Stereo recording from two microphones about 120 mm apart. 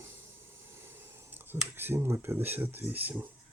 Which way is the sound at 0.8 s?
20° right (ahead or behind).